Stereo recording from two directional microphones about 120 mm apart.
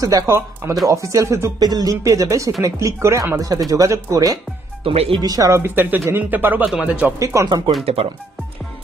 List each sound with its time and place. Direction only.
0.0 s speech: 25° right (ahead or behind)
4.8 s speech: 50° right (ahead or behind)
5.2 s speech: 30° right (ahead or behind); by 7.2 s 15° right (ahead or behind)
7.4 s speech: 40° right (ahead or behind)
7.8 s speech: 55° right (ahead or behind)